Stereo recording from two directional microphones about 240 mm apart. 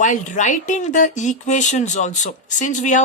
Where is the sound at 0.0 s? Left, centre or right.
Left.